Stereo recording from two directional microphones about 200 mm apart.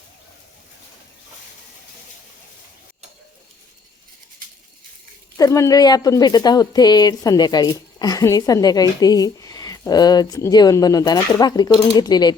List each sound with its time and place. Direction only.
5.4 s a woman's voice: 15° left (ahead or behind)